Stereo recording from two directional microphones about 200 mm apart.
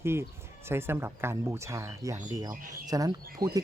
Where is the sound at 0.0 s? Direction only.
10° right (ahead or behind).